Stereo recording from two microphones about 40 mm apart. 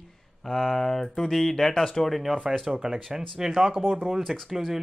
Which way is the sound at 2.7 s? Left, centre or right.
Centre.